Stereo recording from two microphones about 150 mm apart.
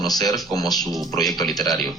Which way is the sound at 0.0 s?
25° left (ahead or behind).